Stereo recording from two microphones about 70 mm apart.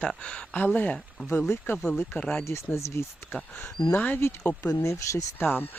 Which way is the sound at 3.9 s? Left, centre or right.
Left.